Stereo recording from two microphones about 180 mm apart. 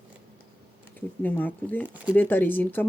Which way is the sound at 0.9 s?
10° left (ahead or behind).